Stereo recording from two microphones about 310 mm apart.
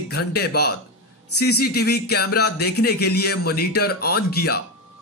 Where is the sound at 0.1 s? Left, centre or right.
Left.